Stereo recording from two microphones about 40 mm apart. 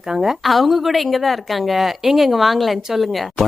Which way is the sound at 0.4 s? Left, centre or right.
Centre.